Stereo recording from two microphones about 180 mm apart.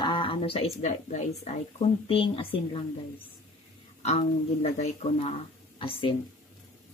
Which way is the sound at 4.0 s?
35° left (ahead or behind).